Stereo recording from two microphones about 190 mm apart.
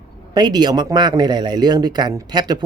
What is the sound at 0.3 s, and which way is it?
Speech, 20° right (ahead or behind).